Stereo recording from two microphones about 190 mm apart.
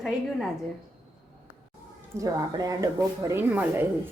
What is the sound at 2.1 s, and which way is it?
Speech, 15° right (ahead or behind).